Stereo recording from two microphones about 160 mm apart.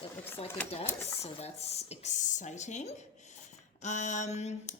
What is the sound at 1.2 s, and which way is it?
A woman's voice, 40° left (ahead or behind).